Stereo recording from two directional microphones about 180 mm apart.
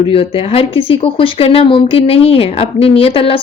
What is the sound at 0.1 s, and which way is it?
Speech, 30° left (ahead or behind).